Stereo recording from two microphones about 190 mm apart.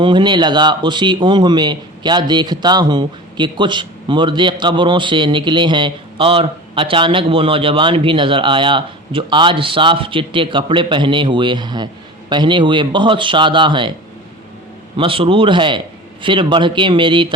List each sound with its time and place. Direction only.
0.0 s a man's voice: 25° right (ahead or behind)
14.9 s a man's voice: 30° right (ahead or behind)